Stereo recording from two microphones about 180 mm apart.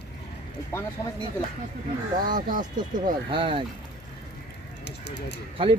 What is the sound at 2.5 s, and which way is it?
Speech, 50° right (ahead or behind).